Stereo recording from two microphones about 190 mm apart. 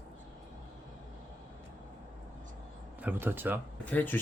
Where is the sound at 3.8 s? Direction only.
10° left (ahead or behind).